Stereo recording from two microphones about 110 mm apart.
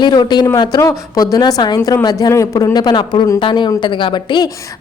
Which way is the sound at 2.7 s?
40° left (ahead or behind).